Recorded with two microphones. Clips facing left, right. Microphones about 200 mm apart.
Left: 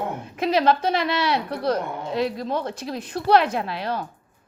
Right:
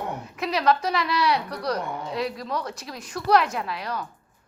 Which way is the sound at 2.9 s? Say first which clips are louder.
Left 5 dB; 55° left (ahead or behind).